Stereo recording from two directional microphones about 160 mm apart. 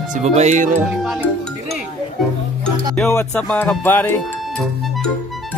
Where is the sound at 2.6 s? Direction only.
15° left (ahead or behind).